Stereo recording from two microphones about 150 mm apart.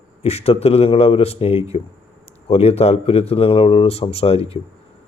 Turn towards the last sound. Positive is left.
turn(degrees=40)  # may be behind; listen again after turning